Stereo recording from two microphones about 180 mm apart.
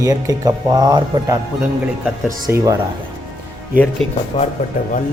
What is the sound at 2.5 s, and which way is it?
Speech, 15° right (ahead or behind).